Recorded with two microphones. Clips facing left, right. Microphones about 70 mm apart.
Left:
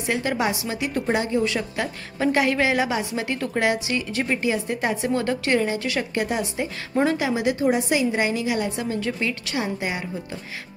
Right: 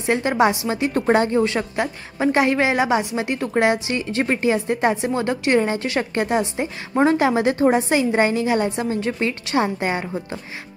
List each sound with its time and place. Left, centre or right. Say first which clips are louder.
0.0 s a woman's voice: right 6 dB; right
1.0 s a woman's voice: right 5 dB; right
4.6 s a woman's voice: right 4 dB; right
7.2 s a woman's voice: right 5 dB; right